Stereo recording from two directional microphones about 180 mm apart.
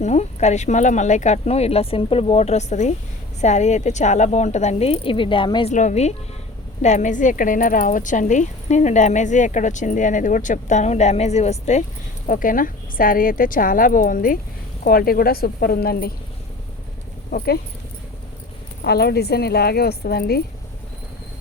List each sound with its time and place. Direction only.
0.0 s speech: 40° left (ahead or behind)
5.7 s speech: 40° left (ahead or behind)
12.3 s speech: 50° left (ahead or behind)
17.3 s speech: 60° left (ahead or behind)
18.8 s speech: 60° left (ahead or behind)